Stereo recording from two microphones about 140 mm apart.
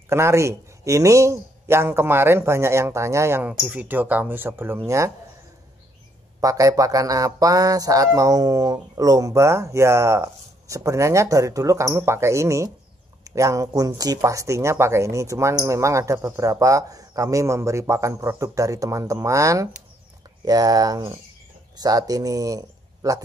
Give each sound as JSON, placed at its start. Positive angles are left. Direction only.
{"t": 0.1, "sound": "speech", "side_deg": -20}
{"t": 6.4, "sound": "speech", "side_deg": -25}